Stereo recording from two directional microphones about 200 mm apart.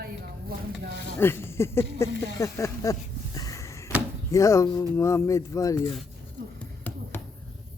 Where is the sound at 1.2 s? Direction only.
10° left (ahead or behind).